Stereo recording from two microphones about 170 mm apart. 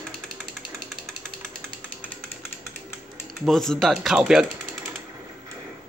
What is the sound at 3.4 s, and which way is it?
Speech, centre (ahead or behind).